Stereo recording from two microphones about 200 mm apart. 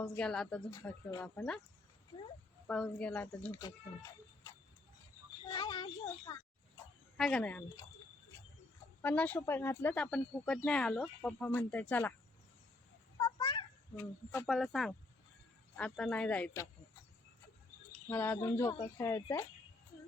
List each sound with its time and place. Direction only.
0.0 s speech: 5° left (ahead or behind)
2.6 s a child's voice: 5° left (ahead or behind); by 6.3 s 20° left (ahead or behind)
7.2 s speech: 5° left (ahead or behind)
9.0 s speech: 10° left (ahead or behind)
13.1 s a sound: 15° left (ahead or behind)
14.0 s speech: 10° left (ahead or behind)
17.9 s speech: 10° left (ahead or behind)